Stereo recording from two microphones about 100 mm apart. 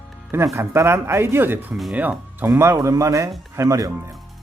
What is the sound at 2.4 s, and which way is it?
Speech, 30° right (ahead or behind).